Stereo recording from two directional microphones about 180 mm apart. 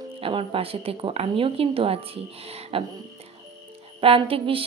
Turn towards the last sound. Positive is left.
turn(degrees=-30)  # may be behind; listen again after turning